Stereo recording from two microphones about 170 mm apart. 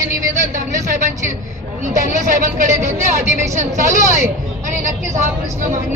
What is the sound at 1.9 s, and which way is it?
A woman's voice, 50° right (ahead or behind).